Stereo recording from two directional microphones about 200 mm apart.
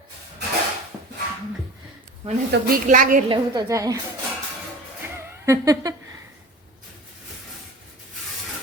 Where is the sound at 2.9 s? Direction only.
40° right (ahead or behind).